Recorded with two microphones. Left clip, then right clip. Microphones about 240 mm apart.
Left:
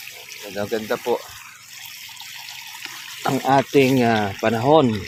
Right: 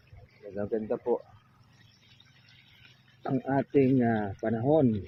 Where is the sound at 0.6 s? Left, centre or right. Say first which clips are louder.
Left 7 dB; left.